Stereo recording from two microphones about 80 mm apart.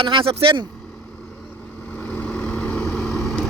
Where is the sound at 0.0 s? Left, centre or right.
Right.